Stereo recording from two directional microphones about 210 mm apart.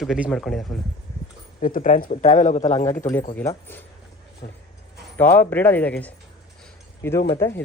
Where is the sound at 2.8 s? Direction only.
15° left (ahead or behind).